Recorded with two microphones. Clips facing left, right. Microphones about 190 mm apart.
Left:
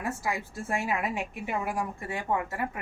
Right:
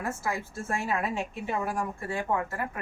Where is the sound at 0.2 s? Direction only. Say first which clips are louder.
Even; 15° left (ahead or behind).